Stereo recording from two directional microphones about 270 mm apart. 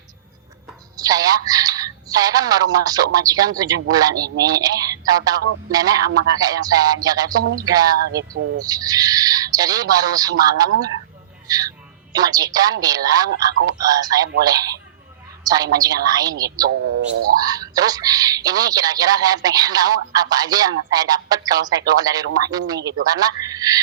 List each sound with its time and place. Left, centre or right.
0.9 s a sound: centre
1.5 s speech: centre
11.4 s a sound: centre
12.1 s speech: centre
16.6 s speech: right
17.4 s a man's voice: centre